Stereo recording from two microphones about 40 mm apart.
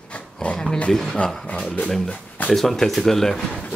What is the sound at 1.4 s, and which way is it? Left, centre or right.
Speech, left.